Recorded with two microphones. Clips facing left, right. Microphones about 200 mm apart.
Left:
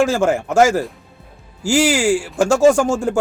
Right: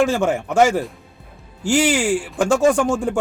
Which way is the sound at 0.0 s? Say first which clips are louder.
Left 2 dB; 5° left (ahead or behind).